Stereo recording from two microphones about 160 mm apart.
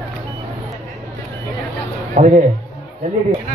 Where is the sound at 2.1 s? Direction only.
50° right (ahead or behind).